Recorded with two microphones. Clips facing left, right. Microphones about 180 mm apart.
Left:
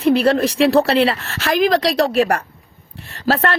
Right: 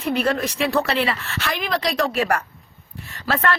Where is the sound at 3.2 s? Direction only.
35° left (ahead or behind).